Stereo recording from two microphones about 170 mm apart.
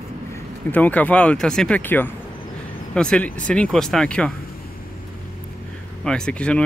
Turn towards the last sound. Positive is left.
turn(degrees=5)  # may be behind; listen again after turning